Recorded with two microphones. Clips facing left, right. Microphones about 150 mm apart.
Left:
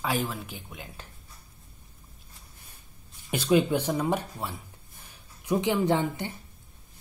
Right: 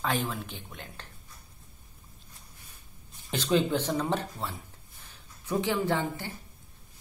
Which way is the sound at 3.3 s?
10° left (ahead or behind).